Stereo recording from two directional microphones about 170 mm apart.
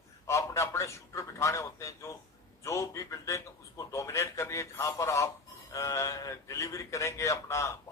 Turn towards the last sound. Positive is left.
turn(degrees=15)  # may be behind; listen again after turning